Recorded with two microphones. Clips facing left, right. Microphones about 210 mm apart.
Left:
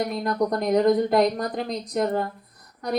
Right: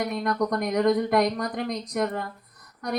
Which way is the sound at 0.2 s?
30° left (ahead or behind).